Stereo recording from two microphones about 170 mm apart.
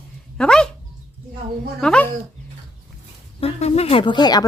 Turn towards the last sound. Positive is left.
turn(degrees=25)  # may be behind; listen again after turning